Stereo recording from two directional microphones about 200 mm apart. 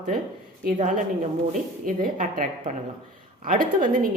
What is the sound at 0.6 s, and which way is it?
A woman's voice, 40° right (ahead or behind).